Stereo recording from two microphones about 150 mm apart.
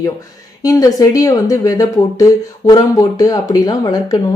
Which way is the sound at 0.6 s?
25° left (ahead or behind).